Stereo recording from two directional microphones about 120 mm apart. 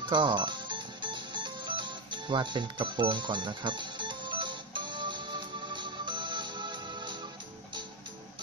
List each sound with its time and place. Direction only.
0.0 s music: 40° right (ahead or behind)